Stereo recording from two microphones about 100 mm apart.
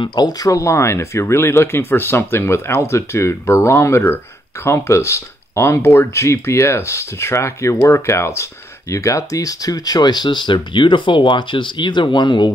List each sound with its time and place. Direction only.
0.0 s speech: 45° left (ahead or behind)